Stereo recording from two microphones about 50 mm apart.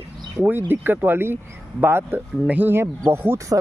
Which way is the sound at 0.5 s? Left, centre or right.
Right.